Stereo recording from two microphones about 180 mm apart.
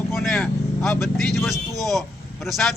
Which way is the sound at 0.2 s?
5° left (ahead or behind).